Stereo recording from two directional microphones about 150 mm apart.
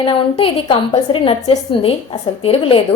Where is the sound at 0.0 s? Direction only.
35° left (ahead or behind).